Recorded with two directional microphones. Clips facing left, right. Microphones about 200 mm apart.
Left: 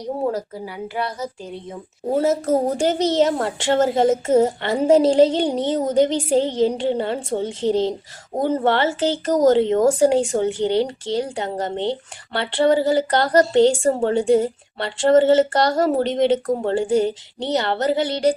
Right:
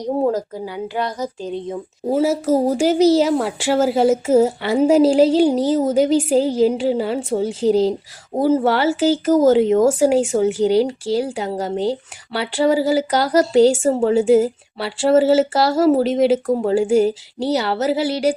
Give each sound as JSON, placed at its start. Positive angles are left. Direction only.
{"t": 0.3, "sound": "speech", "side_deg": -35}
{"t": 2.0, "sound": "speech", "side_deg": -10}